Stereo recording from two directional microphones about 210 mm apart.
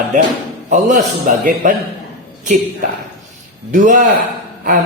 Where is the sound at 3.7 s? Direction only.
40° right (ahead or behind).